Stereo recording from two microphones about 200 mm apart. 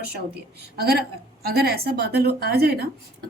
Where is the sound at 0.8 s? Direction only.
50° right (ahead or behind).